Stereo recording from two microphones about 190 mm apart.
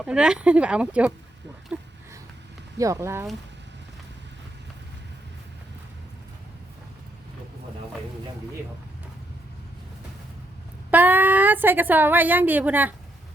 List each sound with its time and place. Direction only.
0.0 s speech: 5° right (ahead or behind)
1.7 s a sound: 10° right (ahead or behind)
2.7 s a woman's voice: 15° right (ahead or behind)
10.9 s a woman's voice: 10° right (ahead or behind)